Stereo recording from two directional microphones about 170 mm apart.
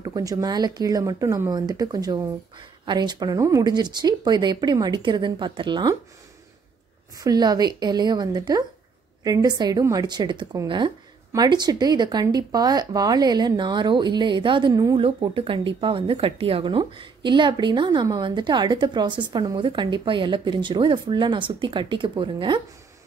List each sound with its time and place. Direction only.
0.0 s speech: 20° right (ahead or behind)
7.2 s speech: 25° right (ahead or behind)